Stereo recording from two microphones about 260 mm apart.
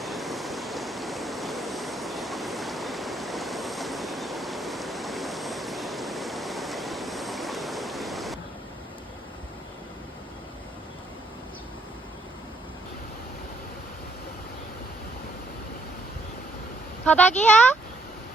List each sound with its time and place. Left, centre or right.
0.0 s waves: centre
17.1 s speech: centre